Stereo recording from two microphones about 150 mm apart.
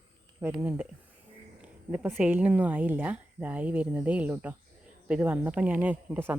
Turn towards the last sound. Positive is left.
turn(degrees=-10)  # may be behind; listen again after turning